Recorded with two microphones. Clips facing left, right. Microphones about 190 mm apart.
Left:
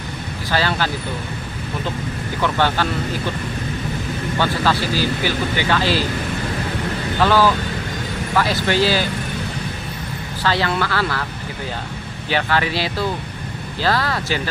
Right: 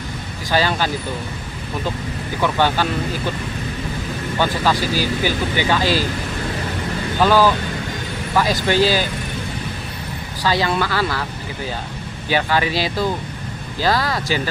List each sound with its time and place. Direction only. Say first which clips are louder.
0.5 s speech: right 2 dB; 15° right (ahead or behind)
2.4 s speech: right 1 dB; 15° right (ahead or behind)
4.4 s speech: right 1 dB; 15° right (ahead or behind)
7.2 s speech: right 1 dB; 15° right (ahead or behind)
10.4 s speech: right 1 dB; 15° right (ahead or behind)
12.3 s speech: right 1 dB; 15° right (ahead or behind)